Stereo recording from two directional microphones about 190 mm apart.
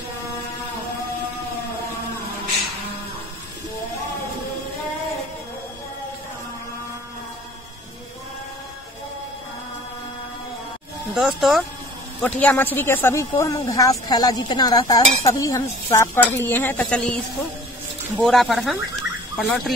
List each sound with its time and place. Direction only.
11.1 s speech: centre (ahead or behind)
12.2 s a woman's voice: 10° left (ahead or behind)